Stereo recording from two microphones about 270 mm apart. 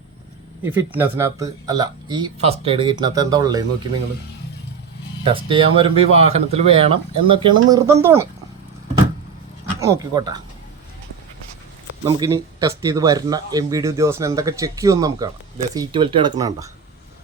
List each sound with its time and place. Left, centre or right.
0.6 s speech: centre
5.2 s speech: centre
9.8 s speech: centre
12.0 s speech: centre